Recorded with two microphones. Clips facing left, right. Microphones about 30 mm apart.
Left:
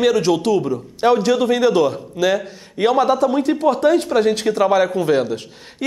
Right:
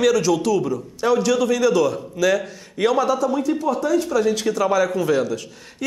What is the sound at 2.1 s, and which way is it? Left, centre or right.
Speech, left.